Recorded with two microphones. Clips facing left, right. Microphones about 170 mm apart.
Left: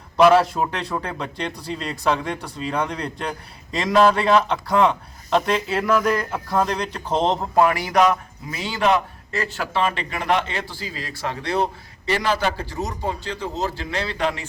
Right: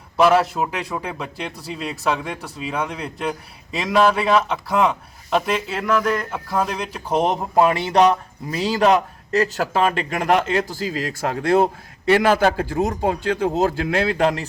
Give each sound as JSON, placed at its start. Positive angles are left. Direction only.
{"t": 0.2, "sound": "a man's voice", "side_deg": 0}